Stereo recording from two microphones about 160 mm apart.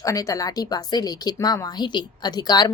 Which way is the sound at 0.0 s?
20° left (ahead or behind).